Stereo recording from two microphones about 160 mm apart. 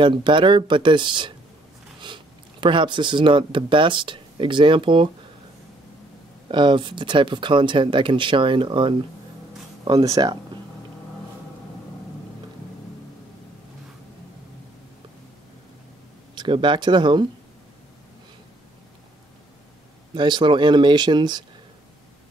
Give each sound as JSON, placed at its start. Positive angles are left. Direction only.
{"t": 0.0, "sound": "speech", "side_deg": -30}
{"t": 6.5, "sound": "speech", "side_deg": -30}
{"t": 16.3, "sound": "speech", "side_deg": -30}
{"t": 20.2, "sound": "speech", "side_deg": -30}